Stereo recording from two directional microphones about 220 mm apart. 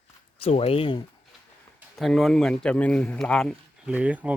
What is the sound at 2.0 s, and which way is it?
Speech, centre (ahead or behind).